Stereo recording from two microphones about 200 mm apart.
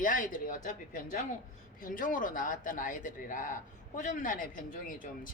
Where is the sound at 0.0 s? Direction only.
40° left (ahead or behind).